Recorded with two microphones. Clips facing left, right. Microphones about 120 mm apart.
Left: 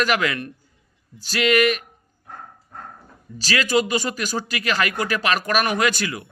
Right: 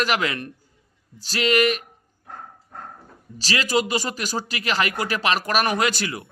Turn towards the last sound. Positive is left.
turn(degrees=-25)  # may be behind; listen again after turning